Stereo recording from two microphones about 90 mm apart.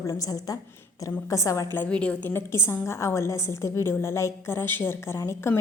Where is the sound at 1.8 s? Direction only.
15° left (ahead or behind).